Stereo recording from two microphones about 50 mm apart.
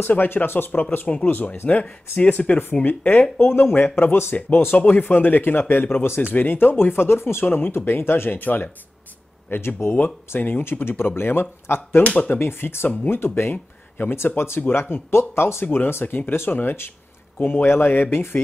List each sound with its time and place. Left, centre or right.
0.0 s speech: left
4.7 s speech: left
9.9 s speech: left
15.6 s speech: left